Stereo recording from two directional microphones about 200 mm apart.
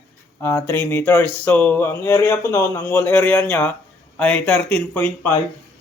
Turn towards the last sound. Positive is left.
turn(degrees=10)  # may be behind; listen again after turning